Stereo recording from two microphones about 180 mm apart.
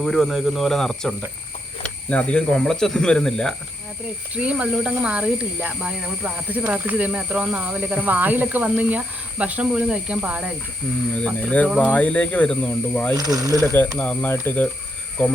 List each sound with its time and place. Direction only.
0.0 s speech: centre (ahead or behind)
4.4 s speech: 5° right (ahead or behind)
11.1 s speech: 5° left (ahead or behind)
13.1 s speech: 20° right (ahead or behind)
14.0 s speech: 10° left (ahead or behind)